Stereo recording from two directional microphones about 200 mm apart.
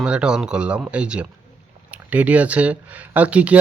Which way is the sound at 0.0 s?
5° right (ahead or behind).